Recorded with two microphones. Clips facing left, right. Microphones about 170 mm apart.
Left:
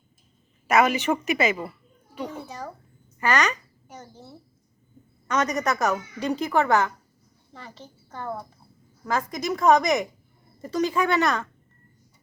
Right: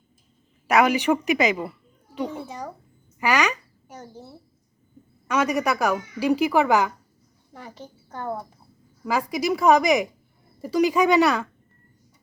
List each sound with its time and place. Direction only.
0.7 s a child's voice: 15° right (ahead or behind)
3.2 s a sound: 10° right (ahead or behind)
5.3 s speech: 10° right (ahead or behind)